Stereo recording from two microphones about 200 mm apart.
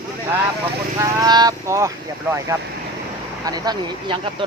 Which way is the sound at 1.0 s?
20° right (ahead or behind).